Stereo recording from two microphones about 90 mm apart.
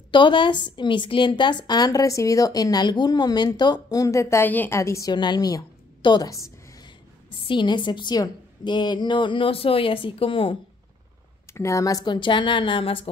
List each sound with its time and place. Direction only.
0.1 s a woman's voice: 60° left (ahead or behind); by 4.5 s 35° left (ahead or behind)
4.5 s a woman's voice: 20° left (ahead or behind)
4.7 s a woman's voice: 35° left (ahead or behind)
5.1 s a woman's voice: 50° left (ahead or behind)
7.4 s a woman's voice: 60° left (ahead or behind); by 10.6 s 80° left
11.5 s a woman's voice: 35° left (ahead or behind)
12.0 s a woman's voice: 60° left (ahead or behind); by 13.1 s 90° left